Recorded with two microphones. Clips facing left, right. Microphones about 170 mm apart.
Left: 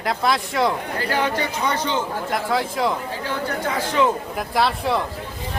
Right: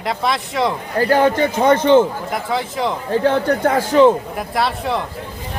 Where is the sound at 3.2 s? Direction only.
60° right (ahead or behind).